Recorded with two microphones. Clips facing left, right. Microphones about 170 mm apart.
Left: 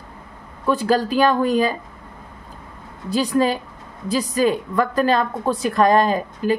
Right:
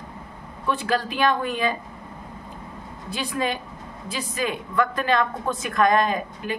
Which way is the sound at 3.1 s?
40° left (ahead or behind).